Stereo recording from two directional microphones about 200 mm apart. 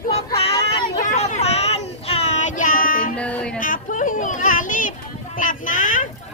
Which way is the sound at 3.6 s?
40° left (ahead or behind).